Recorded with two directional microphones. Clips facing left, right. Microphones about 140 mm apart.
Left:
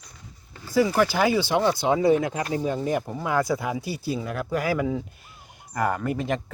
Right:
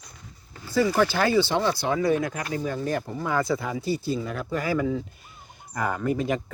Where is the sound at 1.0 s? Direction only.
10° left (ahead or behind).